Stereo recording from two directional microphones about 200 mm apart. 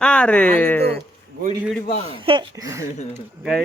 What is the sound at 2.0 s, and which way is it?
Speech, 25° right (ahead or behind).